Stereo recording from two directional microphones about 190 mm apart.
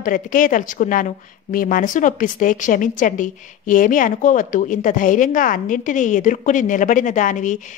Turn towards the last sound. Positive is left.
turn(degrees=40)  # may be behind; listen again after turning